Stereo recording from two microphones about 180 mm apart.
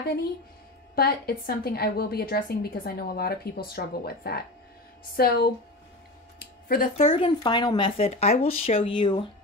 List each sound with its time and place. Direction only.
0.0 s a woman's voice: 60° left (ahead or behind)
6.4 s a sound: 55° left (ahead or behind)
7.1 s speech: 30° left (ahead or behind)